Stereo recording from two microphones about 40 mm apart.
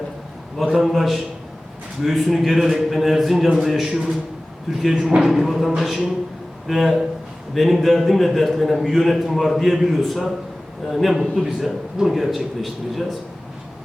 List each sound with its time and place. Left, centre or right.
0.8 s a man's voice: centre